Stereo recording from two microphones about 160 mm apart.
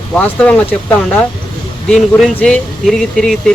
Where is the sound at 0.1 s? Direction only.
10° left (ahead or behind).